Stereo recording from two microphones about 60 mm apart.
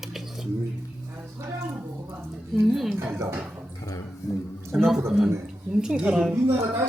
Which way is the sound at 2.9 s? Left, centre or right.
Right.